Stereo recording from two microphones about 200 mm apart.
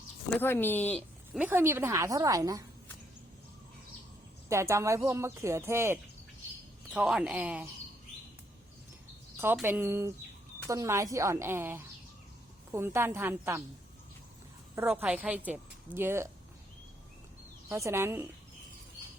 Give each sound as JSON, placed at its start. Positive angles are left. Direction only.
{"t": 0.3, "sound": "speech", "side_deg": 10}
{"t": 1.3, "sound": "a woman's voice", "side_deg": -10}
{"t": 4.4, "sound": "a woman's voice", "side_deg": -15}
{"t": 9.4, "sound": "a woman's voice", "side_deg": -10}
{"t": 14.8, "sound": "a woman's voice", "side_deg": -5}
{"t": 17.7, "sound": "a woman's voice", "side_deg": -15}